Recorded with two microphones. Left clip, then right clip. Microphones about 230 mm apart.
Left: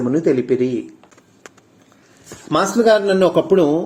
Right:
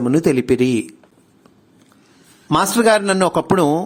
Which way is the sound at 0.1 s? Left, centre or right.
Right.